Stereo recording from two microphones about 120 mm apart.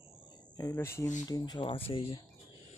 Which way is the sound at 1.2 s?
35° left (ahead or behind).